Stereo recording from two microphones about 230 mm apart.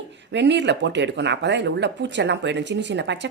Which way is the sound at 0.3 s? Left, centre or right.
Right.